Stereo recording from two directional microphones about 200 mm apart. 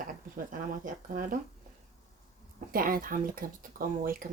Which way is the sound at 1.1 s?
45° right (ahead or behind).